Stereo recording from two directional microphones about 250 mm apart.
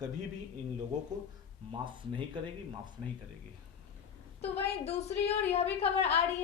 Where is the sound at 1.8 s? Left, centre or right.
Centre.